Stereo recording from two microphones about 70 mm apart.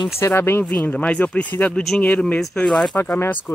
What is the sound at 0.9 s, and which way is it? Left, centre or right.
Speech, centre.